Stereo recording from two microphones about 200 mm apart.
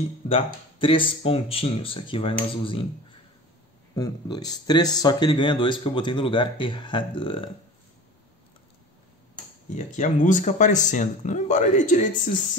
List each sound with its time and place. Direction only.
0.3 s speech: 25° left (ahead or behind)
3.9 s speech: 20° left (ahead or behind)
9.8 s speech: 40° left (ahead or behind)